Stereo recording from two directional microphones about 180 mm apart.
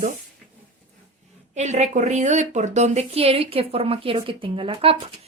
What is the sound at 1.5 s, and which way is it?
A woman's voice, 40° right (ahead or behind).